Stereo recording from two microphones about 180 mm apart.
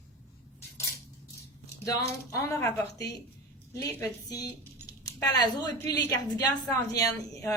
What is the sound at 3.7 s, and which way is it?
A woman's voice, 20° left (ahead or behind).